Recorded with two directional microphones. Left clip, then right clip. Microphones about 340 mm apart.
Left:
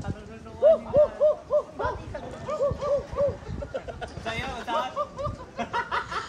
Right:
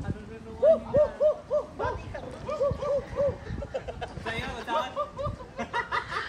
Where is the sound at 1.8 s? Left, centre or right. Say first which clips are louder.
Left 2 dB; left.